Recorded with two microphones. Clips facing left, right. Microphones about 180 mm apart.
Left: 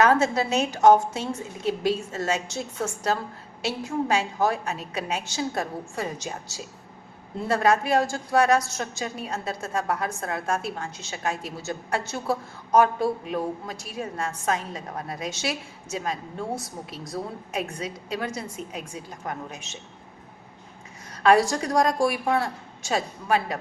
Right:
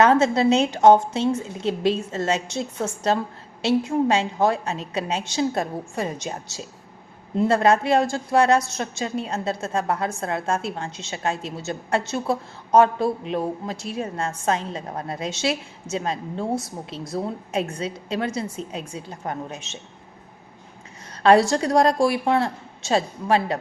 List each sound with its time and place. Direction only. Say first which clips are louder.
0.0 s a woman's voice: right 4 dB; 25° right (ahead or behind)
21.2 s a woman's voice: right 3 dB; 30° right (ahead or behind)